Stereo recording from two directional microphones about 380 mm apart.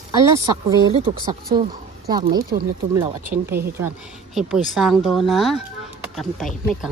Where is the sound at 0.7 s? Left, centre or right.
Centre.